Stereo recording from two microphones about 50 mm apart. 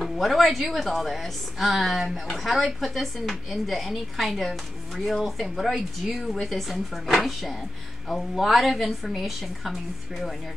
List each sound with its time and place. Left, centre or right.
0.0 s a woman's voice: centre